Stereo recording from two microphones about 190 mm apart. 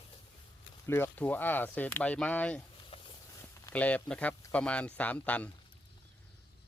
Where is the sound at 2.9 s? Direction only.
25° left (ahead or behind).